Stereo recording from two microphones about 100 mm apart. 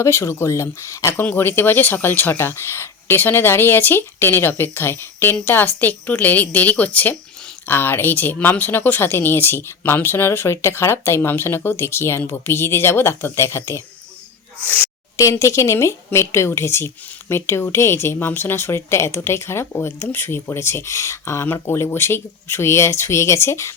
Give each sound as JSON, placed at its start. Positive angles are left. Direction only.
{"t": 0.0, "sound": "a woman's voice", "side_deg": 25}
{"t": 15.1, "sound": "a woman's voice", "side_deg": 30}